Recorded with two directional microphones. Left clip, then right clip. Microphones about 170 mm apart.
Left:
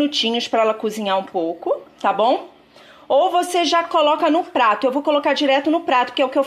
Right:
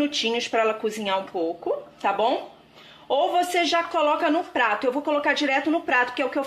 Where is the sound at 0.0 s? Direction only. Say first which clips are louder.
Left 5 dB; 30° left (ahead or behind).